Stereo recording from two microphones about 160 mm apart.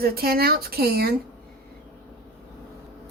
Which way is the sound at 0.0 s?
75° right (ahead or behind).